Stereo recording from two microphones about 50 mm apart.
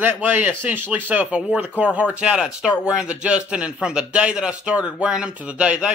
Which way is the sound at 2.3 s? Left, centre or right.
Centre.